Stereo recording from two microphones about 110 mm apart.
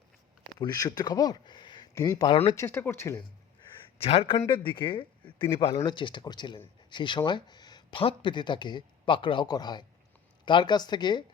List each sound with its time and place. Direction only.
0.6 s speech: 35° left (ahead or behind)
2.6 s speech: 20° left (ahead or behind)
4.0 s speech: 65° left (ahead or behind)
4.4 s speech: 45° left (ahead or behind)